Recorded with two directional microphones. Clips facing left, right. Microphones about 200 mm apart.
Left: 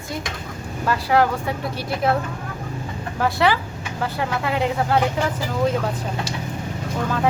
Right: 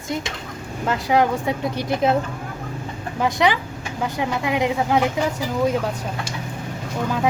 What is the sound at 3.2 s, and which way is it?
Speech, 15° right (ahead or behind).